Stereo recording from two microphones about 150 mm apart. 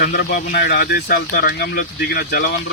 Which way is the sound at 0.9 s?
90° left.